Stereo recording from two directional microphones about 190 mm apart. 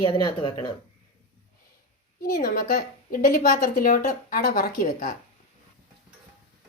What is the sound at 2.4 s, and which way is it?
A woman's voice, 45° left (ahead or behind).